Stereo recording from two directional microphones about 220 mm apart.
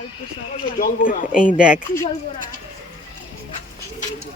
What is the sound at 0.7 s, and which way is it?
Speech, 40° left (ahead or behind).